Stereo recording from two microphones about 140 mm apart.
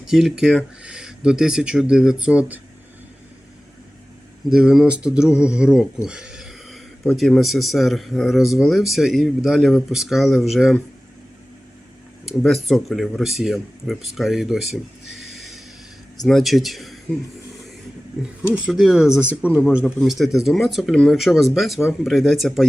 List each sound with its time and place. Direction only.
0.1 s a man's voice: 5° right (ahead or behind)
4.4 s a man's voice: 5° right (ahead or behind)
6.1 s a sound: 5° right (ahead or behind)
7.2 s a man's voice: centre (ahead or behind)
12.4 s a man's voice: centre (ahead or behind)
15.2 s a sound: centre (ahead or behind)
16.2 s a man's voice: centre (ahead or behind)
18.2 s a man's voice: 10° right (ahead or behind)